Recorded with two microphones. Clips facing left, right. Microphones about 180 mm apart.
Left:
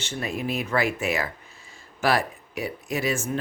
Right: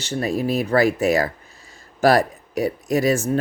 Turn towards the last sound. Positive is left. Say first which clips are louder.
# right 8 dB
turn(degrees=-40)  # may be behind; listen again after turning